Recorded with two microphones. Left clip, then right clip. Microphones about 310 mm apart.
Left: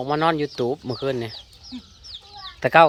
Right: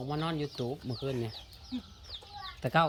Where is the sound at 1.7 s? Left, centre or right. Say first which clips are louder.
Left 4 dB; right.